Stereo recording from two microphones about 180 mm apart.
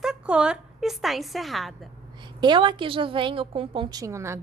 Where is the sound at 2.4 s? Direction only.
25° right (ahead or behind).